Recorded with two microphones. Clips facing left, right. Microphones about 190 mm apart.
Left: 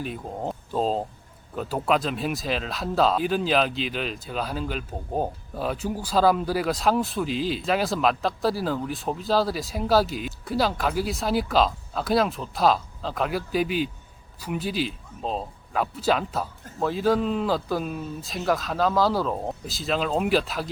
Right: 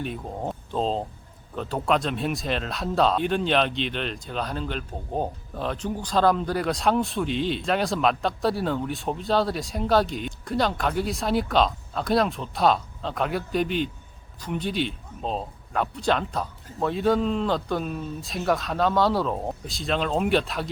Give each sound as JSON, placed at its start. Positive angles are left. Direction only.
{"t": 0.0, "sound": "speech", "side_deg": 0}